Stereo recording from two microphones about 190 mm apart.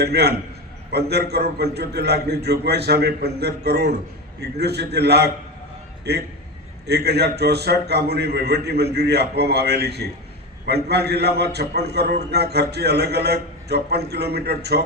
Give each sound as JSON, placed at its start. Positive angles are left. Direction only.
{"t": 0.0, "sound": "a man's voice", "side_deg": -60}